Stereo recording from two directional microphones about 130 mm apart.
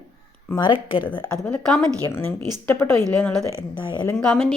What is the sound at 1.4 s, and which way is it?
Speech, 5° left (ahead or behind).